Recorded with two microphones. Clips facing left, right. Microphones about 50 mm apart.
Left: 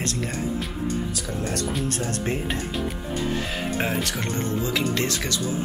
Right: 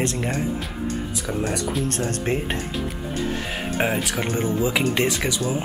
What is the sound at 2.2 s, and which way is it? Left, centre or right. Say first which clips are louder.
Speech: right 2 dB; right.